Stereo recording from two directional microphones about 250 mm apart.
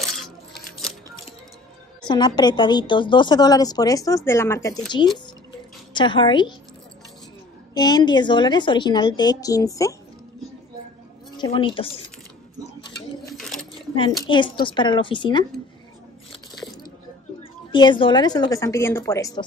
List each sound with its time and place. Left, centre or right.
2.0 s a woman's voice: centre
7.7 s a woman's voice: centre
11.3 s speech: centre
13.3 s a sound: centre
14.2 s speech: centre
16.3 s a sound: centre
17.4 s a woman's voice: centre